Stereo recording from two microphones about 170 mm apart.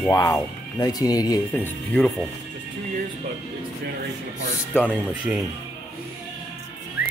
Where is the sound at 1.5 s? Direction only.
10° left (ahead or behind).